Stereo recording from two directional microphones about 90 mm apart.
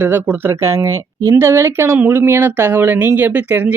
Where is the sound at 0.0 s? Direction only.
25° right (ahead or behind).